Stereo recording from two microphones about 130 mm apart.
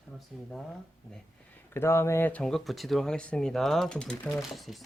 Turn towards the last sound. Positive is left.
turn(degrees=0)  # may be behind; listen again after turning